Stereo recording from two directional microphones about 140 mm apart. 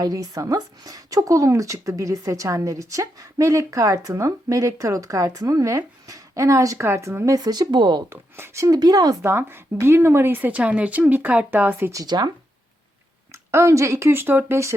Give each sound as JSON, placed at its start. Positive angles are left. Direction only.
{"t": 0.0, "sound": "speech", "side_deg": -25}
{"t": 8.1, "sound": "speech", "side_deg": -20}
{"t": 9.3, "sound": "speech", "side_deg": -15}
{"t": 13.3, "sound": "speech", "side_deg": -20}